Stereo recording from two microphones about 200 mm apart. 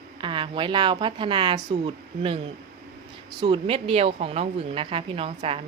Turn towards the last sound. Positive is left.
turn(degrees=-30)  # may be behind; listen again after turning